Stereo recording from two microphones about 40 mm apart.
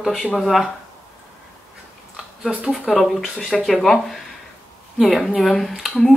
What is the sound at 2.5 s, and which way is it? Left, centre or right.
Speech, right.